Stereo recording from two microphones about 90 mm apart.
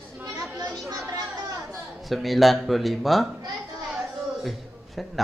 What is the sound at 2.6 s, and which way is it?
Speech, centre (ahead or behind).